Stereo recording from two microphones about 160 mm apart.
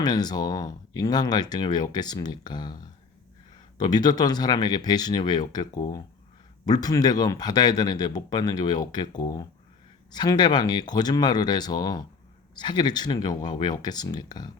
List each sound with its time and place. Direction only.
0.0 s speech: 25° left (ahead or behind)
3.8 s speech: 25° left (ahead or behind)